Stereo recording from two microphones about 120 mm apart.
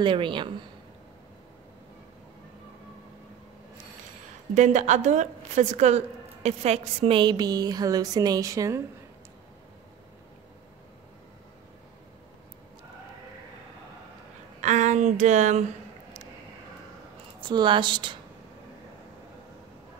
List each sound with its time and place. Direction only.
0.0 s a woman's voice: 45° right (ahead or behind)
4.6 s a woman's voice: 80° right; by 8.8 s 25° right (ahead or behind)
14.6 s speech: 80° right
17.4 s speech: 40° right (ahead or behind)